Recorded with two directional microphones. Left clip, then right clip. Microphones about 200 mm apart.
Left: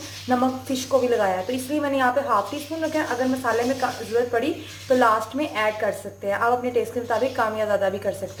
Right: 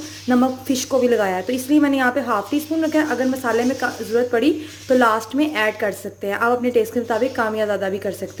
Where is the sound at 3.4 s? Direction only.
50° right (ahead or behind).